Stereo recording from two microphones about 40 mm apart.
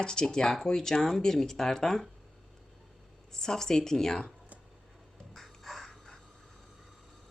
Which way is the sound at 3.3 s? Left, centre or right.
Centre.